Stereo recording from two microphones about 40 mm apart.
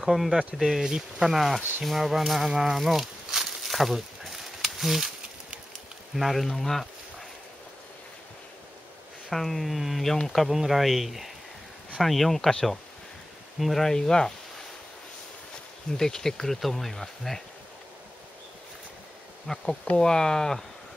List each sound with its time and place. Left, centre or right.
0.0 s speech: centre
2.6 s a sound: centre
6.1 s speech: centre
9.3 s speech: centre
15.9 s speech: centre
19.4 s speech: centre